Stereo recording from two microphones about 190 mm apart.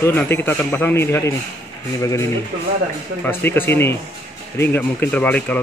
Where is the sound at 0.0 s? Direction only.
10° left (ahead or behind).